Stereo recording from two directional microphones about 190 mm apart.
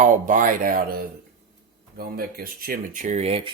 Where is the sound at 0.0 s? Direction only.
45° right (ahead or behind).